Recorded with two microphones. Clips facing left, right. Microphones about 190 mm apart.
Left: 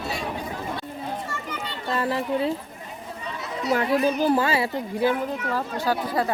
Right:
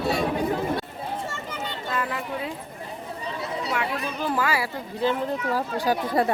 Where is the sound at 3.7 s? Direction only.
35° left (ahead or behind).